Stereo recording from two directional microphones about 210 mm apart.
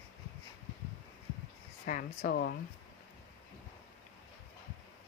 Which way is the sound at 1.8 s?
45° left (ahead or behind).